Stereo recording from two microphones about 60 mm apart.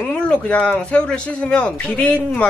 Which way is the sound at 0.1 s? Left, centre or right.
Left.